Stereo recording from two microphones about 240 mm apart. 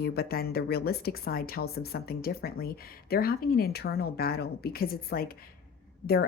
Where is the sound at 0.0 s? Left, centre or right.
Left.